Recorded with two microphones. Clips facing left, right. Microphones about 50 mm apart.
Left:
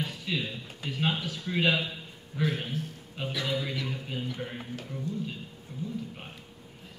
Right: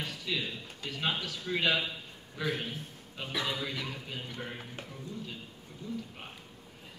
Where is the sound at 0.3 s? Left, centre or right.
Centre.